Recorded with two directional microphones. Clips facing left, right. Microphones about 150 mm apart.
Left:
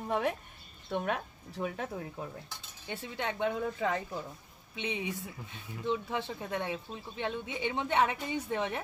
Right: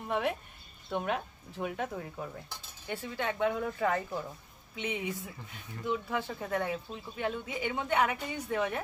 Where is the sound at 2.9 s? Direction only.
20° left (ahead or behind).